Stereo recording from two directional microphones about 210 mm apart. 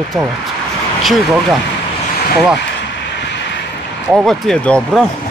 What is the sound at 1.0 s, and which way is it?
Speech, centre (ahead or behind).